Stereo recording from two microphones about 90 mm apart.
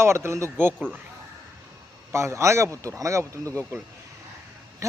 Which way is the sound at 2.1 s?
30° right (ahead or behind).